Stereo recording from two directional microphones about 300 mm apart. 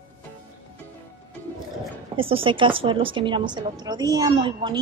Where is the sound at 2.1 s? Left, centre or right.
Centre.